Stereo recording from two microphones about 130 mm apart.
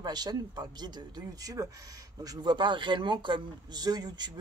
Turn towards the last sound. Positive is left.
turn(degrees=-30)  # may be behind; listen again after turning